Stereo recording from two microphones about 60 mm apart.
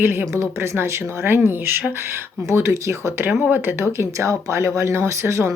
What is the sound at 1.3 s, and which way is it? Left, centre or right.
Speech, right.